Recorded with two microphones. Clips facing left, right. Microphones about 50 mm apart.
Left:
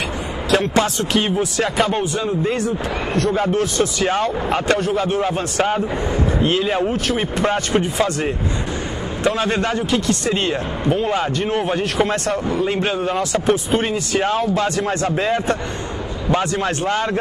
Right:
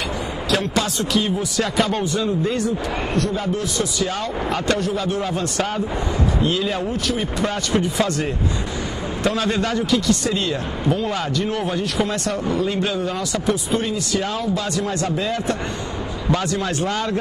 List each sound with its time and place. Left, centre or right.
0.5 s speech: left
1.6 s speech: left
3.2 s speech: left
4.1 s speech: left
6.4 s speech: left
7.4 s speech: left
9.2 s speech: left